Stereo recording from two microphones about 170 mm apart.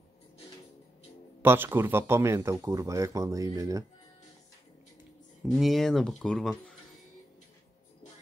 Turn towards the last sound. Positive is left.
turn(degrees=5)  # may be behind; listen again after turning